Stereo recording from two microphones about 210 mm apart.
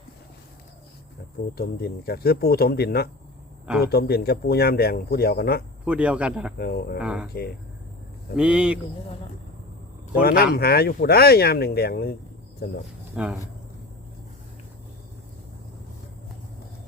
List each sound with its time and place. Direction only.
1.5 s speech: 45° left (ahead or behind)
5.8 s speech: 5° right (ahead or behind)
6.6 s speech: 45° left (ahead or behind)
7.0 s speech: 5° right (ahead or behind)
8.4 s speech: 5° right (ahead or behind)
10.1 s speech: 45° left (ahead or behind)
13.2 s speech: 5° right (ahead or behind)